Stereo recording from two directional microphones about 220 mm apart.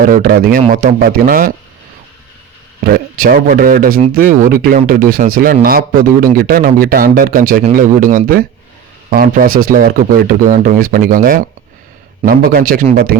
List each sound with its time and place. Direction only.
0.0 s speech: 40° right (ahead or behind)
2.8 s speech: 40° right (ahead or behind)